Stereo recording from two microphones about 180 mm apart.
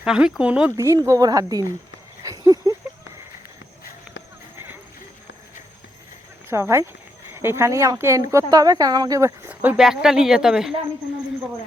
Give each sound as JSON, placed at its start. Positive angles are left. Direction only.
{"t": 0.0, "sound": "speech", "side_deg": -5}
{"t": 0.8, "sound": "speech", "side_deg": -20}
{"t": 2.2, "sound": "a sound", "side_deg": -20}
{"t": 4.5, "sound": "clip-clop", "side_deg": -10}
{"t": 6.5, "sound": "speech", "side_deg": -15}